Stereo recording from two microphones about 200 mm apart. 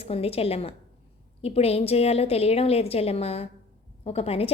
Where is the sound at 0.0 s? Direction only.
30° left (ahead or behind).